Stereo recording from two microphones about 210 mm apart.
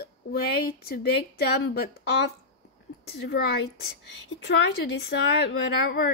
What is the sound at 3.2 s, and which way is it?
Speech, 55° left (ahead or behind).